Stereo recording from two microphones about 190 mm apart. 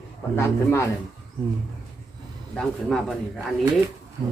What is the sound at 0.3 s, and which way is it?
Speech, 15° left (ahead or behind).